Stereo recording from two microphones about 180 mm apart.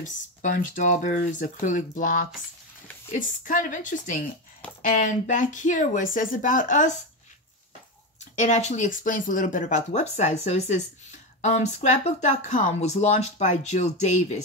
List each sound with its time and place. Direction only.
0.0 s speech: 45° left (ahead or behind)
8.4 s speech: 40° left (ahead or behind)